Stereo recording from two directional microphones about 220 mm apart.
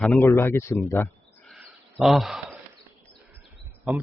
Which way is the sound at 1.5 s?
Centre (ahead or behind).